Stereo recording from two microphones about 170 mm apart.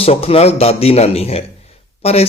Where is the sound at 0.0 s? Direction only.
35° left (ahead or behind).